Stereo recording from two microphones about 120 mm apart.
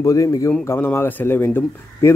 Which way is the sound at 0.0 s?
25° left (ahead or behind).